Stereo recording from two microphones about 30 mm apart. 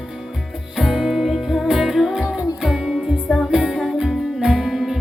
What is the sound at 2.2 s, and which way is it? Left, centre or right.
Music, right.